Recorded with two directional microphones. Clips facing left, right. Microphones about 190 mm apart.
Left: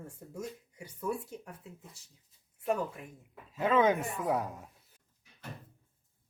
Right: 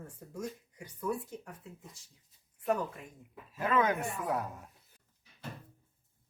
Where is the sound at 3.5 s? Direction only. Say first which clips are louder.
Left 3 dB; 25° left (ahead or behind).